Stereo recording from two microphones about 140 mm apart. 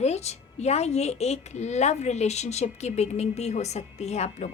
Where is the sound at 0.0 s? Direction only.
50° left (ahead or behind).